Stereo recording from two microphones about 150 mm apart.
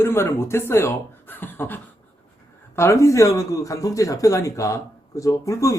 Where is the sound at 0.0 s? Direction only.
15° left (ahead or behind).